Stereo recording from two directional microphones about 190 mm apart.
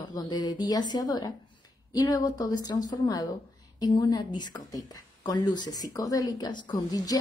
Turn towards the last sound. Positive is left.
turn(degrees=20)  # may be behind; listen again after turning